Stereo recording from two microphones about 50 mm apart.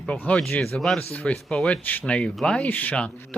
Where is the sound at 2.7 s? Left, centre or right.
Left.